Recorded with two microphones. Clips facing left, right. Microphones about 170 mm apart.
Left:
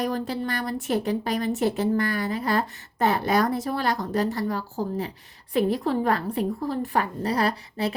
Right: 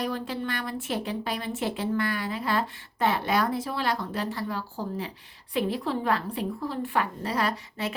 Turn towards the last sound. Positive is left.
turn(degrees=35)  # may be behind; listen again after turning